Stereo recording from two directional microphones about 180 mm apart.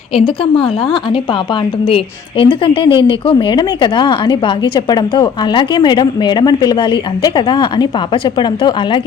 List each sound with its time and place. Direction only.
0.1 s speech: 30° left (ahead or behind)
2.4 s speech: 30° left (ahead or behind)